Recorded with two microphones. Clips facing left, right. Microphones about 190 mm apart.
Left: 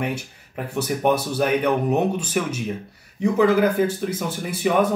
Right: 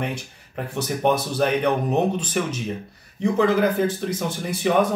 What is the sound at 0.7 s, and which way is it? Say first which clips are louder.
Speech: left 1 dB; 10° left (ahead or behind).